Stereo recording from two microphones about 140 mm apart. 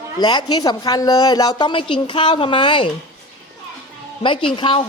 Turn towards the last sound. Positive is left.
turn(degrees=40)  # may be behind; listen again after turning